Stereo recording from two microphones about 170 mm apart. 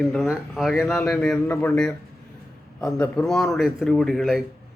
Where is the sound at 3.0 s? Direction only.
5° left (ahead or behind).